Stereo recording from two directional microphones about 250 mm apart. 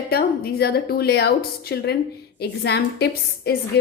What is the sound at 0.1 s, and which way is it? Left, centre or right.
A woman's voice, left.